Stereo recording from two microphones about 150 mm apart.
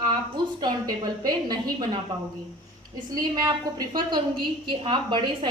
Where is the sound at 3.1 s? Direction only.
25° right (ahead or behind).